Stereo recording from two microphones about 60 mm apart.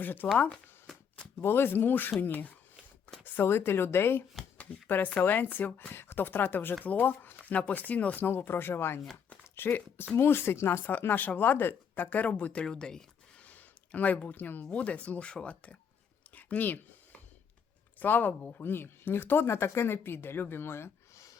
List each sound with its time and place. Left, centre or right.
0.0 s speech: left
0.5 s a sound: centre
1.4 s speech: left
8.2 s speech: left
10.8 s speech: left; by 13.4 s centre
13.4 s speech: left
16.3 s a sound: left
18.0 s speech: left
18.6 s speech: left